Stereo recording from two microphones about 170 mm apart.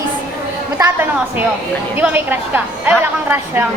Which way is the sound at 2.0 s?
10° right (ahead or behind).